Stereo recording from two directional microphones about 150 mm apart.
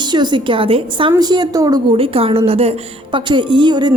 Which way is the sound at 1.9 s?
40° right (ahead or behind).